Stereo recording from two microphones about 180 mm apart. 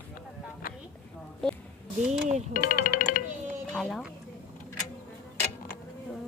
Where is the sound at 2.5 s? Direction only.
50° left (ahead or behind).